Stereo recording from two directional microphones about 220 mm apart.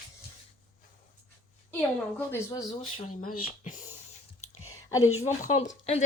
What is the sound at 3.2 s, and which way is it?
Speech, 35° left (ahead or behind).